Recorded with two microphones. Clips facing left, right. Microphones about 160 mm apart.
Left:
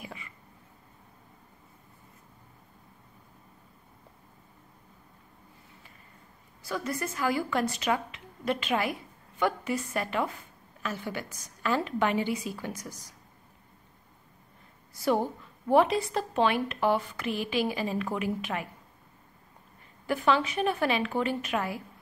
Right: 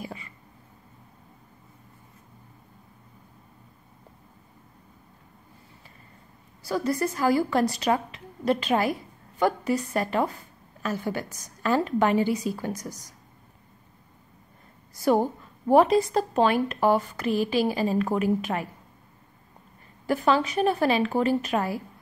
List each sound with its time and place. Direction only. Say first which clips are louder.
0.0 s a sound: right 6 dB; 35° right (ahead or behind)
6.6 s a woman's voice: right 7 dB; 35° right (ahead or behind)
15.0 s a woman's voice: right 5 dB; 40° right (ahead or behind)
20.1 s a woman's voice: right 3 dB; 40° right (ahead or behind)